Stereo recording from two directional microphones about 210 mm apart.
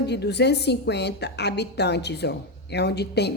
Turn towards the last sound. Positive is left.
turn(degrees=50)  # may be behind; listen again after turning